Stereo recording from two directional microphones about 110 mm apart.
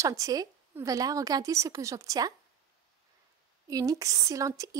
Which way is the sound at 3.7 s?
30° right (ahead or behind).